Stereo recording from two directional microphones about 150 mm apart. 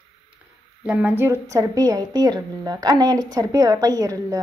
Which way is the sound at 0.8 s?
10° right (ahead or behind).